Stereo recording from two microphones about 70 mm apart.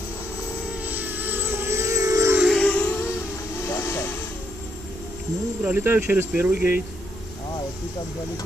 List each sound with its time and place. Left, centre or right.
0.8 s a sound: right
2.5 s music: centre
3.6 s vehicle: left
5.6 s speech: right